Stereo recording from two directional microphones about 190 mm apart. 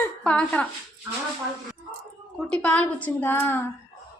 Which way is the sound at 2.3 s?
5° left (ahead or behind).